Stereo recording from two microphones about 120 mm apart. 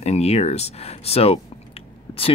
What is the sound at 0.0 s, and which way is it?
Speech, 60° left (ahead or behind).